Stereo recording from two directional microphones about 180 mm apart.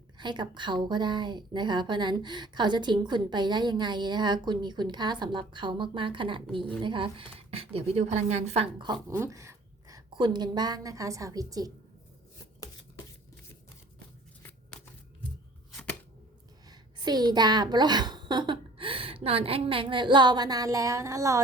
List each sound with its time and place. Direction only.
0.2 s a woman's voice: 25° right (ahead or behind)
8.8 s a woman's voice: 20° right (ahead or behind)
14.7 s shuffling cards: 5° left (ahead or behind)
15.7 s a sound: 5° left (ahead or behind)
16.6 s a woman's voice: 20° right (ahead or behind)